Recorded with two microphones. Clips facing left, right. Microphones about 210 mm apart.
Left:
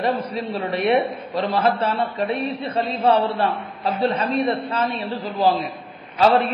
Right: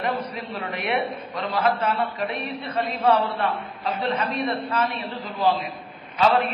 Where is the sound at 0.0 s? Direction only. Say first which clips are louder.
Left 5 dB; 30° left (ahead or behind).